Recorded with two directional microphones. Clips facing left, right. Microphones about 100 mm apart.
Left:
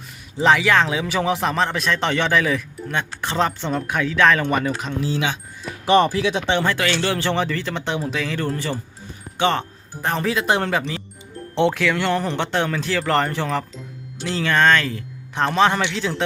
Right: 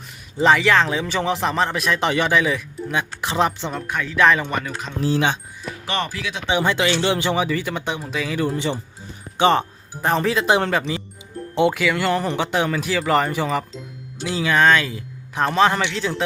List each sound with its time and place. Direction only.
0.4 s speech: centre (ahead or behind); by 3.7 s 15° right (ahead or behind)
3.7 s speech: 5° left (ahead or behind)
5.8 s speech: 20° left (ahead or behind)
6.5 s speech: 15° right (ahead or behind)
8.5 s speech: 20° right (ahead or behind)
10.2 s speech: centre (ahead or behind)